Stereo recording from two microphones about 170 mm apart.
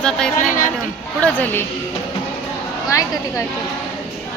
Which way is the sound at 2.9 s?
15° left (ahead or behind).